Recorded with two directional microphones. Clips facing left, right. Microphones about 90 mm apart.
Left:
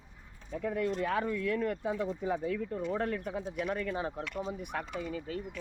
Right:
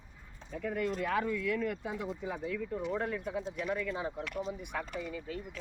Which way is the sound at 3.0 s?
55° left (ahead or behind).